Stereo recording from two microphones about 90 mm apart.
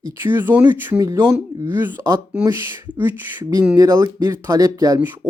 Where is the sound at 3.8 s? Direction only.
40° right (ahead or behind).